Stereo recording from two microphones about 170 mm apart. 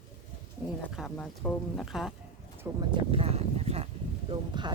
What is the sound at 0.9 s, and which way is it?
A woman's voice, 5° left (ahead or behind).